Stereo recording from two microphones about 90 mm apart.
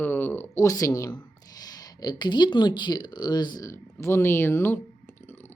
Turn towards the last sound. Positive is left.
turn(degrees=25)  # may be behind; listen again after turning